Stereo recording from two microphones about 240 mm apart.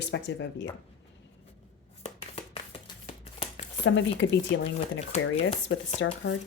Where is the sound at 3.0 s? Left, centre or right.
Left.